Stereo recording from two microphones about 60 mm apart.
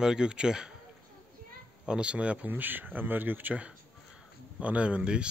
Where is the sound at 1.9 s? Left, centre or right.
Centre.